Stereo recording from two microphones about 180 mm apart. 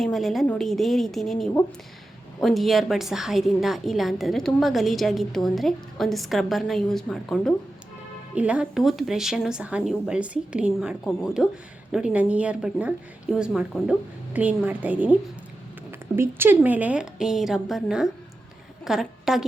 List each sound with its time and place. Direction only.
0.0 s a woman's voice: centre (ahead or behind)